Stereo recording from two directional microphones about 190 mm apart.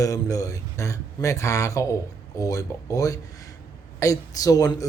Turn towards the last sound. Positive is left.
turn(degrees=20)  # may be behind; listen again after turning